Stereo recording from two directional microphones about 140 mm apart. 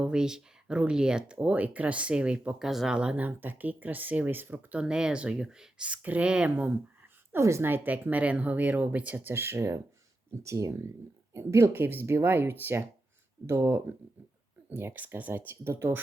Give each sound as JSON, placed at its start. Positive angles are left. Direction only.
{"t": 0.0, "sound": "speech", "side_deg": -5}
{"t": 7.3, "sound": "speech", "side_deg": -20}